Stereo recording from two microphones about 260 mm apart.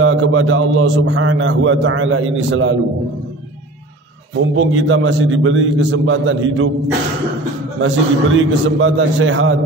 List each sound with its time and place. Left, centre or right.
0.0 s a man's voice: right
4.6 s a man's voice: right
7.8 s a man's voice: right